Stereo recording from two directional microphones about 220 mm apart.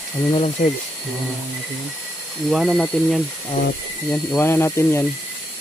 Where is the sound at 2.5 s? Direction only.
Centre (ahead or behind).